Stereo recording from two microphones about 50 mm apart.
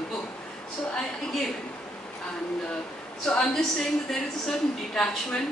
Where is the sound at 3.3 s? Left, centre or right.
Centre.